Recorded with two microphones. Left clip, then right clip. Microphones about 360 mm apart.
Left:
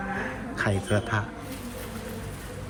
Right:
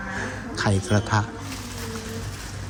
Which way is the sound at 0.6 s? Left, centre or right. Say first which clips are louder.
Right 2 dB; centre.